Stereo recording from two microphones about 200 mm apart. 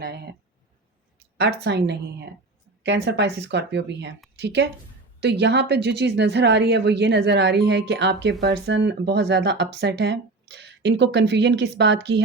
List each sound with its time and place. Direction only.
1.4 s speech: 55° right (ahead or behind)